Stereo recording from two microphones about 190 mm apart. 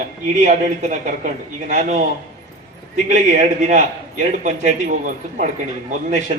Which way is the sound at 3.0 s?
40° right (ahead or behind).